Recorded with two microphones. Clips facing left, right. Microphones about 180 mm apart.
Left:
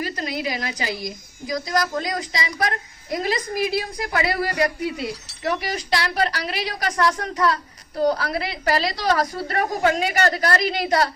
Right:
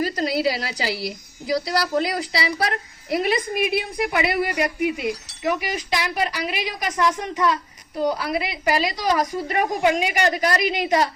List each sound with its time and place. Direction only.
0.0 s a woman's voice: 35° right (ahead or behind); by 11.1 s 15° right (ahead or behind)